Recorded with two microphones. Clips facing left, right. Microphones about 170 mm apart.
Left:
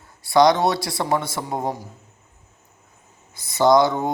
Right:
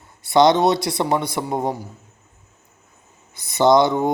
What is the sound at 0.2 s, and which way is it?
A man's voice, 25° right (ahead or behind).